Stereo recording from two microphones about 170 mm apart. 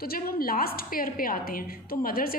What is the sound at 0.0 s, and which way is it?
A woman's voice, 60° left (ahead or behind).